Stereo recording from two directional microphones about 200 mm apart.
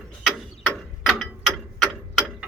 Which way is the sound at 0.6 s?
Centre (ahead or behind).